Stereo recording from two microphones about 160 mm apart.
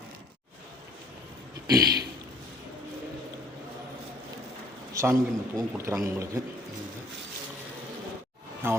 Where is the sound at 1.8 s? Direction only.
90° right.